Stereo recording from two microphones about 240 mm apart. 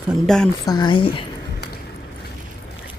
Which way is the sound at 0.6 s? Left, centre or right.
Centre.